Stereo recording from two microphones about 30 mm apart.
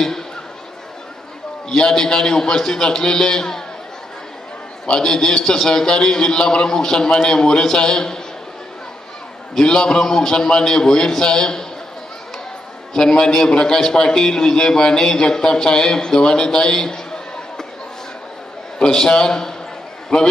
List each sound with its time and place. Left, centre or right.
1.7 s a man's voice: centre
4.8 s a man's voice: left
9.6 s a man's voice: left
12.9 s a man's voice: left
18.9 s a man's voice: centre